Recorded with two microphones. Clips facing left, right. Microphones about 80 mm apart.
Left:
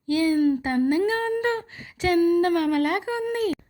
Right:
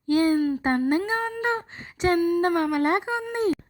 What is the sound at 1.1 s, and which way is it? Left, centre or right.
Speech, centre.